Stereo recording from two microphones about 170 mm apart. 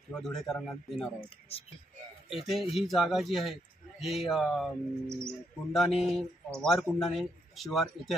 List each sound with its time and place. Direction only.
0.1 s speech: centre (ahead or behind)
1.5 s speech: 35° left (ahead or behind)
2.2 s speech: centre (ahead or behind)
5.0 s speech: 15° right (ahead or behind)
5.7 s speech: centre (ahead or behind)